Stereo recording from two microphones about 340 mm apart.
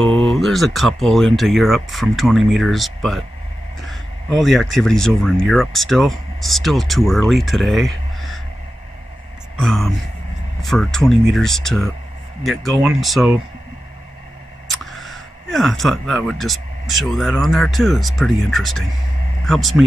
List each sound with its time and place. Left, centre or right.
0.1 s speech: centre
9.6 s speech: centre
14.7 s a man's voice: centre